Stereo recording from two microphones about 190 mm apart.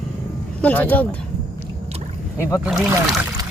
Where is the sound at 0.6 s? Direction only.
10° left (ahead or behind).